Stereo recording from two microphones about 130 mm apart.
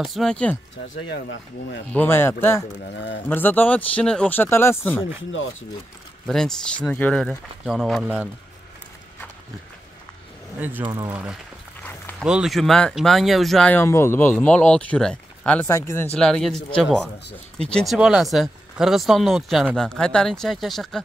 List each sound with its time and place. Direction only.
0.0 s speech: centre (ahead or behind)
1.9 s speech: 15° left (ahead or behind)
6.2 s speech: 5° left (ahead or behind)
10.6 s speech: 15° right (ahead or behind)
10.9 s speech: 30° right (ahead or behind)
11.8 s dog: 15° left (ahead or behind)
12.2 s speech: 5° right (ahead or behind)
13.7 s speech: 20° left (ahead or behind)
15.7 s speech: 20° left (ahead or behind)
16.2 s speech: 5° left (ahead or behind)
17.9 s speech: 5° right (ahead or behind)